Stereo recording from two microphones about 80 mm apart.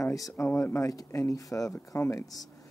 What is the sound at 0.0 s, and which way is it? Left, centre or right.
Speech, left.